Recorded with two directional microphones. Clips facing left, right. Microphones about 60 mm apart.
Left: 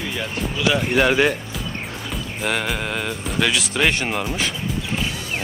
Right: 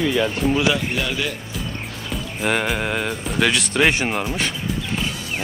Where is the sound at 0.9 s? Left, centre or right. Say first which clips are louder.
Left 8 dB; left.